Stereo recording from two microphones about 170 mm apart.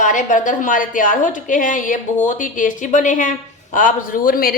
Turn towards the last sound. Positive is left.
turn(degrees=60)  # may be behind; listen again after turning